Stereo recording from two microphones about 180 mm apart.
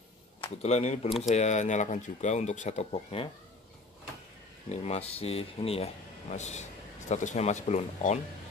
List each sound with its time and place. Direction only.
0.4 s speech: 35° left (ahead or behind)
4.6 s speech: 35° left (ahead or behind)